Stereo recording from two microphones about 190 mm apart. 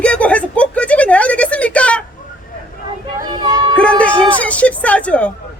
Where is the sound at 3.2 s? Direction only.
20° right (ahead or behind).